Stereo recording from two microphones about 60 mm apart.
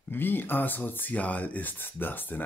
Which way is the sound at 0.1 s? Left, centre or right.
Left.